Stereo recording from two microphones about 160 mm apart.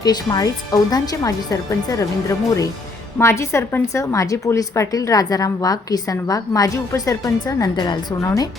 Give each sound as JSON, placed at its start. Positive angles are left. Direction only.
{"t": 0.0, "sound": "a woman's voice", "side_deg": 25}